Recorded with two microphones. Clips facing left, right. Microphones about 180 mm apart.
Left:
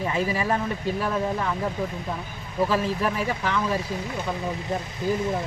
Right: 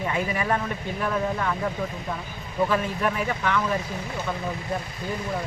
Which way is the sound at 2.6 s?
30° left (ahead or behind).